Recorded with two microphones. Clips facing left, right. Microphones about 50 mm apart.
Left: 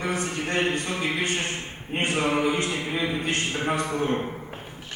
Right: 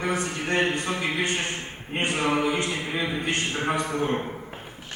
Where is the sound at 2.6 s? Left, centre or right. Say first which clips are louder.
Left 1 dB; centre.